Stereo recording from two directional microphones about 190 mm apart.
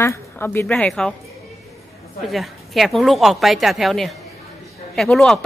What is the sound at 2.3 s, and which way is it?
A woman's voice, centre (ahead or behind).